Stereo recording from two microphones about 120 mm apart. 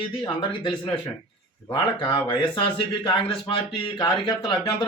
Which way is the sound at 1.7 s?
40° left (ahead or behind).